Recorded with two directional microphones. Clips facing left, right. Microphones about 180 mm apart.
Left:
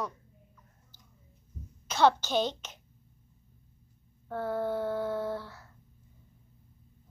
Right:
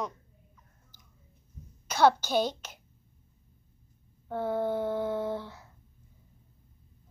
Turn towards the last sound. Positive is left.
turn(degrees=-15)  # may be behind; listen again after turning